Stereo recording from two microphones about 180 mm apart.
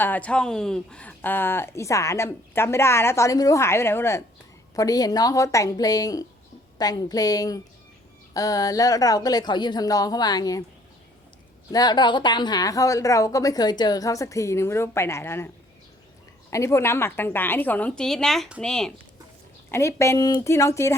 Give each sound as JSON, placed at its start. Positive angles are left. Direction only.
{"t": 0.0, "sound": "speech", "side_deg": 10}
{"t": 11.7, "sound": "speech", "side_deg": 20}
{"t": 16.5, "sound": "speech", "side_deg": 15}
{"t": 19.7, "sound": "speech", "side_deg": 15}